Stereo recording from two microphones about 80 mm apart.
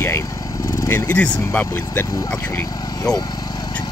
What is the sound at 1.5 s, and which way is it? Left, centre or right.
Speech, left.